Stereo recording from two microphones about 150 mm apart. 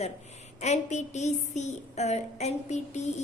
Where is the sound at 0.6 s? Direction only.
50° left (ahead or behind).